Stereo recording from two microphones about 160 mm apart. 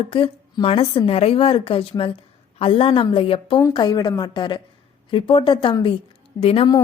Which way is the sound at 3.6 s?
25° left (ahead or behind).